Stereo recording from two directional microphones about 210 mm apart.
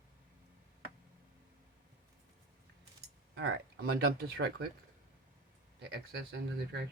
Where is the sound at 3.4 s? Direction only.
45° right (ahead or behind).